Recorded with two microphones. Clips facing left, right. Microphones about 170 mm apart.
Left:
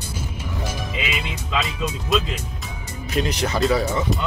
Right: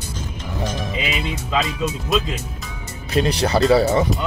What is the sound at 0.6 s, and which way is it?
Music, 10° left (ahead or behind).